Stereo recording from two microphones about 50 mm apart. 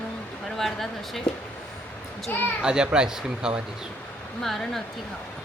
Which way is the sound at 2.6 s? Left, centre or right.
Centre.